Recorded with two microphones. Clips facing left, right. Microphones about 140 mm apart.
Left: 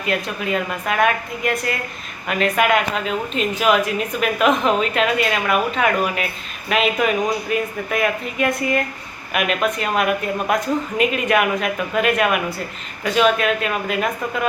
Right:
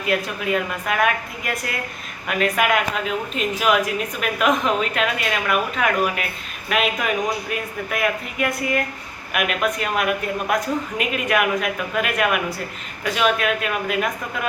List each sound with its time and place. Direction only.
0.0 s speech: 5° right (ahead or behind)